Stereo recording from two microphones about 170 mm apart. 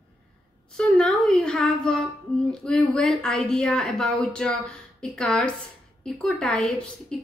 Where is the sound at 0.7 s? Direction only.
5° left (ahead or behind).